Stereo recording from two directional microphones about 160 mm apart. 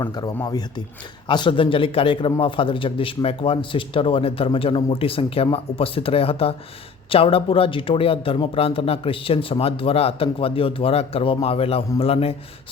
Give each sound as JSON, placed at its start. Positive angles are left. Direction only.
{"t": 0.0, "sound": "speech", "side_deg": 25}
{"t": 1.3, "sound": "speech", "side_deg": 30}